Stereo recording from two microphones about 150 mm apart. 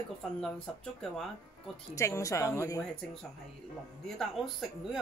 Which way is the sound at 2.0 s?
20° left (ahead or behind).